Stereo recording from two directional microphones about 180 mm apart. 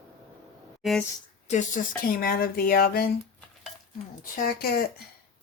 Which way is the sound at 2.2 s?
55° left (ahead or behind).